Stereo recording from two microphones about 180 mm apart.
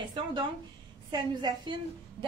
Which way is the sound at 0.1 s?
25° right (ahead or behind).